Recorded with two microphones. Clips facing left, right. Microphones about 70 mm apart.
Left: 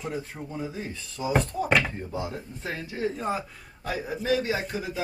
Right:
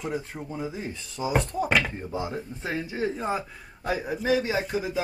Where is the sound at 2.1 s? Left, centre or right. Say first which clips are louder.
Right 2 dB; centre.